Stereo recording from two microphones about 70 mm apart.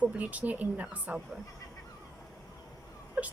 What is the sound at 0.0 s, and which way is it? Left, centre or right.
Speech, right.